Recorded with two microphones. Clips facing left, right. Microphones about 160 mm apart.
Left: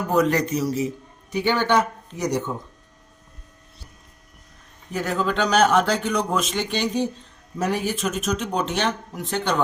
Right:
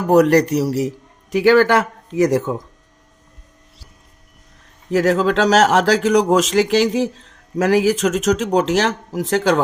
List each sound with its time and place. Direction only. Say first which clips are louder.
0.1 s a man's voice: right 8 dB; 75° right (ahead or behind); by 2.4 s 90° right
4.9 s speech: right 9 dB; 90° right